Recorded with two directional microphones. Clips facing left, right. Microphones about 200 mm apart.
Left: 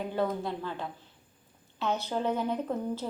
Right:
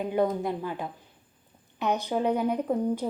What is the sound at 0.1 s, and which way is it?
A woman's voice, 15° right (ahead or behind).